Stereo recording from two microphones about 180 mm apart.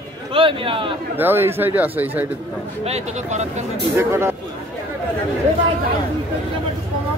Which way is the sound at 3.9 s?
15° right (ahead or behind).